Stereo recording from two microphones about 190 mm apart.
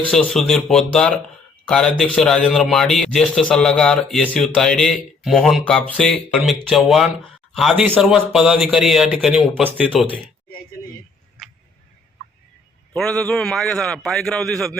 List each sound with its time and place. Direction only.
0.1 s a man's voice: centre (ahead or behind)
12.9 s a man's voice: 5° left (ahead or behind)